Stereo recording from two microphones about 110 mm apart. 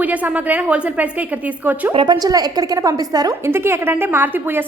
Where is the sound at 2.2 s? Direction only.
35° right (ahead or behind).